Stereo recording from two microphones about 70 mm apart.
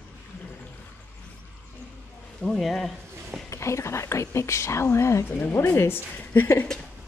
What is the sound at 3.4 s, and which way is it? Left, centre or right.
Speech, left.